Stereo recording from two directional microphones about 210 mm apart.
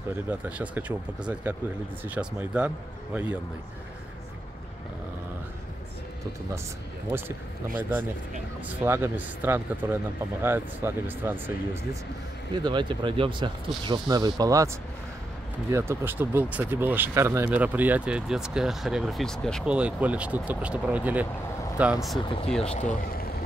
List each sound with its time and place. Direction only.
0.3 s speech: 10° right (ahead or behind)
7.1 s speech: 10° right (ahead or behind)
8.6 s speech: 10° right (ahead or behind)
12.5 s speech: 20° right (ahead or behind)
15.7 s speech: 10° right (ahead or behind)
22.8 s speech: 35° left (ahead or behind)